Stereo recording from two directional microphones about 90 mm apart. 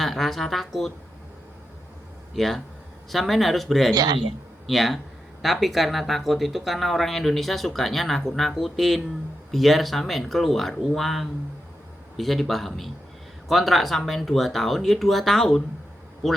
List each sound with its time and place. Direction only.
0.0 s speech: centre (ahead or behind)
2.3 s speech: centre (ahead or behind)
3.9 s a man's voice: 45° right (ahead or behind)
4.6 s speech: centre (ahead or behind)